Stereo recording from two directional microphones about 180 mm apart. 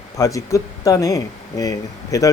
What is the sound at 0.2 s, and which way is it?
Speech, 20° left (ahead or behind).